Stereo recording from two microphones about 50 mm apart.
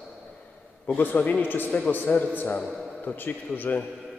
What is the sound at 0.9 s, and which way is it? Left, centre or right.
A man's voice, left.